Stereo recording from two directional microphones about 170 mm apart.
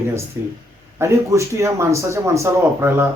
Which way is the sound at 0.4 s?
15° right (ahead or behind).